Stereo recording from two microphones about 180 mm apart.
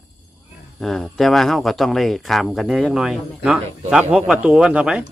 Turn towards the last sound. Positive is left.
turn(degrees=-5)  # may be behind; listen again after turning